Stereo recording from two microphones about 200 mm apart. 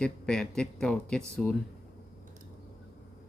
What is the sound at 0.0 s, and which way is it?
Speech, 5° left (ahead or behind).